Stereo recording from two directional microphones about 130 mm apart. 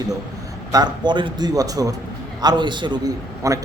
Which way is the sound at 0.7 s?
35° right (ahead or behind).